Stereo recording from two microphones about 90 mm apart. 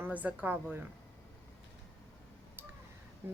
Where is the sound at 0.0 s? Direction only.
15° right (ahead or behind).